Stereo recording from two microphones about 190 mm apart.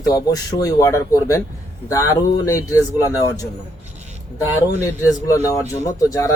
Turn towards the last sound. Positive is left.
turn(degrees=15)  # may be behind; listen again after turning